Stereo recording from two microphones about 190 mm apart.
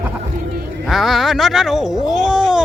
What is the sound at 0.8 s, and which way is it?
Speech, centre (ahead or behind).